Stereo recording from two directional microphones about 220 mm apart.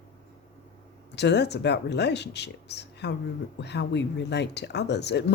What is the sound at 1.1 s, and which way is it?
Speech, 50° left (ahead or behind).